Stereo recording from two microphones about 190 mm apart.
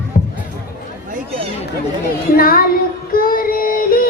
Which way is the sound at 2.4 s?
50° left (ahead or behind).